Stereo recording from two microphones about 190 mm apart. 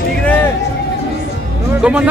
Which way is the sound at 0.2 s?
10° left (ahead or behind).